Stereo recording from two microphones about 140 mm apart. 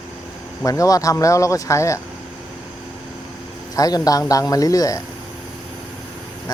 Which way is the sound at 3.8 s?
25° left (ahead or behind).